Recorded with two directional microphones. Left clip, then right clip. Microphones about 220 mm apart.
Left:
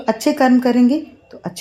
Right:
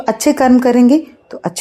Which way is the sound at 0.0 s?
50° right (ahead or behind).